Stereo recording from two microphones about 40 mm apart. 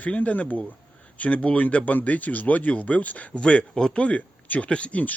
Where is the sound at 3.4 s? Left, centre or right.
Left.